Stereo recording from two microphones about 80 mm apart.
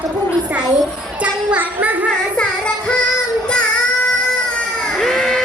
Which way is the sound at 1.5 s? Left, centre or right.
Centre.